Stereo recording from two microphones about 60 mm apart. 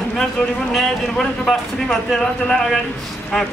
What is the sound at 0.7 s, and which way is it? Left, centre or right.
A man's voice, centre.